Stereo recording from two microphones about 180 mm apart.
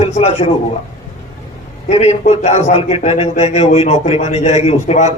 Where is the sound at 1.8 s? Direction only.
40° left (ahead or behind).